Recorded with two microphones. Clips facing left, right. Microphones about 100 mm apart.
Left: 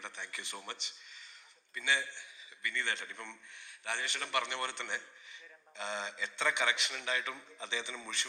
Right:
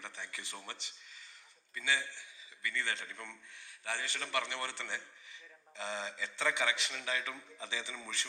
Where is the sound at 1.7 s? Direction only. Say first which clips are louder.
Left 1 dB; 20° left (ahead or behind).